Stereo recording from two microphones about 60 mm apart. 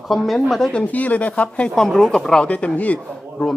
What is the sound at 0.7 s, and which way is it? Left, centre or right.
A man's voice, left.